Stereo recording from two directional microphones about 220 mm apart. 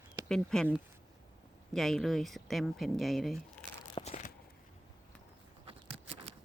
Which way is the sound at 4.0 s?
30° left (ahead or behind).